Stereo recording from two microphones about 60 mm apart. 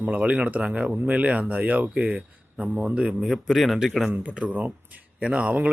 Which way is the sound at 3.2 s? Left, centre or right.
Centre.